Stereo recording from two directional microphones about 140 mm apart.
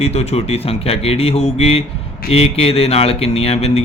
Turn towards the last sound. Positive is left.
turn(degrees=45)  # may be behind; listen again after turning